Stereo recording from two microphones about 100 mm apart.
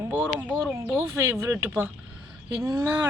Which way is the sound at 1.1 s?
25° right (ahead or behind).